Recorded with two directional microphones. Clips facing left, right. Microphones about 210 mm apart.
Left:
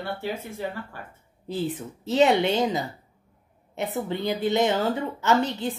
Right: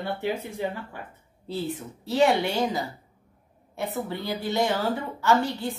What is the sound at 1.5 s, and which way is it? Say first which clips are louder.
A woman's voice: left 2 dB; 15° left (ahead or behind).